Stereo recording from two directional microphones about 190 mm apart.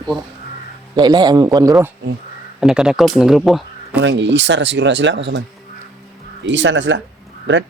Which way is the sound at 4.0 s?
70° right (ahead or behind).